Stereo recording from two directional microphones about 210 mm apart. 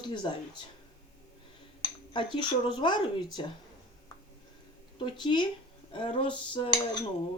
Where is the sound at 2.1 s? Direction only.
20° left (ahead or behind).